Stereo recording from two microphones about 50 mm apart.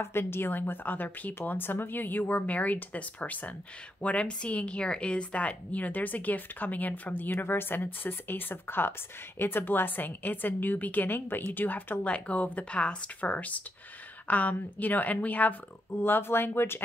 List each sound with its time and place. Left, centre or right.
0.0 s a woman's voice: left
7.2 s a woman's voice: left
12.0 s a woman's voice: left
15.9 s speech: left